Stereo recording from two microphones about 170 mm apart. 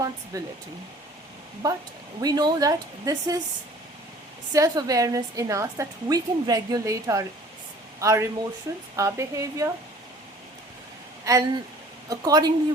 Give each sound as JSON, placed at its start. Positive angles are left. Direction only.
{"t": 0.3, "sound": "a woman's voice", "side_deg": -20}
{"t": 1.6, "sound": "a woman's voice", "side_deg": -20}
{"t": 4.5, "sound": "a woman's voice", "side_deg": -20}
{"t": 11.3, "sound": "a woman's voice", "side_deg": -20}